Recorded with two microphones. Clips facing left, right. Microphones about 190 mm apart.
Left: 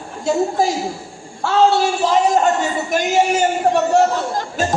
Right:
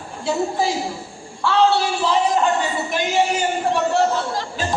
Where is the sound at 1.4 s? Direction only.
45° left (ahead or behind).